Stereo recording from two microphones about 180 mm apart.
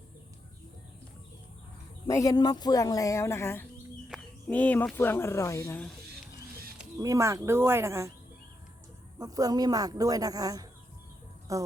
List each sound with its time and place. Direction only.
2.0 s speech: 20° left (ahead or behind)
7.0 s speech: 15° right (ahead or behind)
9.1 s speech: 20° right (ahead or behind)